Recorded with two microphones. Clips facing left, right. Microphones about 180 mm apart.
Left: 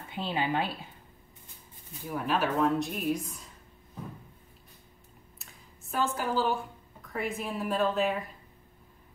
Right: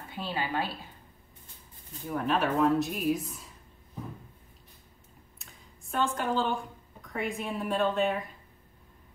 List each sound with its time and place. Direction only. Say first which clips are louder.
0.1 s speech: left 3 dB; 20° left (ahead or behind)
2.0 s speech: right 1 dB; 5° left (ahead or behind)
5.4 s speech: even; centre (ahead or behind)